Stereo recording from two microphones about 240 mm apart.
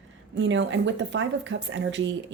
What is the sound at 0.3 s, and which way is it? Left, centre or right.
Speech, right.